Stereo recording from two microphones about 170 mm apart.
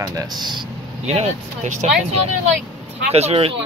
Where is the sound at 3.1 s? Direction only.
35° right (ahead or behind).